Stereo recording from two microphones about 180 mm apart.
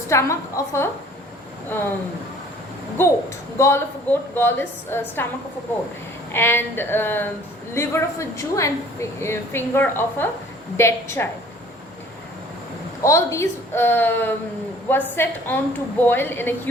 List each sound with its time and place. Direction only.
0.1 s a woman's voice: 15° left (ahead or behind)
3.0 s a woman's voice: 15° left (ahead or behind)
6.3 s a woman's voice: 10° left (ahead or behind)
13.0 s a woman's voice: 15° left (ahead or behind)